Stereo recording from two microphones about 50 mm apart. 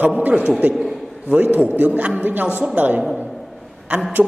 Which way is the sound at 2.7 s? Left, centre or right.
Right.